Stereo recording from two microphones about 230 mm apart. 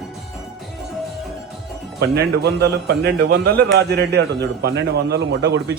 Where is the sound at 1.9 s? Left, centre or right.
Right.